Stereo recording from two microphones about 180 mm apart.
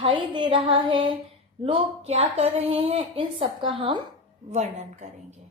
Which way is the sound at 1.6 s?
30° right (ahead or behind).